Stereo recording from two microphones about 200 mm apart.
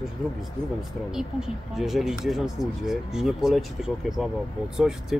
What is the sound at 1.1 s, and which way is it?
Speech, centre (ahead or behind).